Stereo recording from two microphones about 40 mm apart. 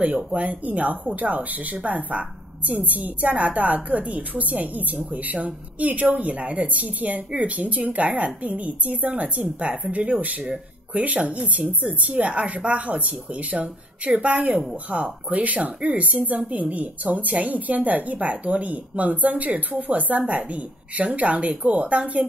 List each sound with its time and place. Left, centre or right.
0.0 s a woman's voice: right